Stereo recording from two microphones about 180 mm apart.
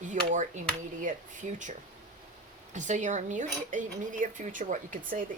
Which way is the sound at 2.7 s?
40° right (ahead or behind).